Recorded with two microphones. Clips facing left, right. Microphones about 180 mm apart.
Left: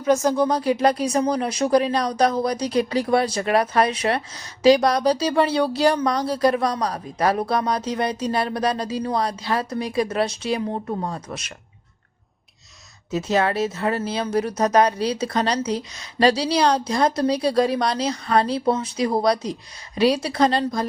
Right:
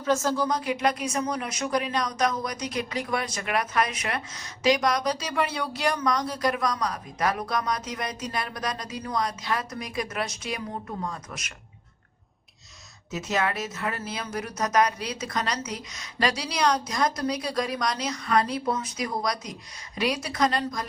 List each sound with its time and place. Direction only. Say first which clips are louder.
0.0 s speech: left 6 dB; 15° left (ahead or behind)
0.4 s speech: left 6 dB; 35° left (ahead or behind)
13.1 s speech: left 7 dB; 30° left (ahead or behind)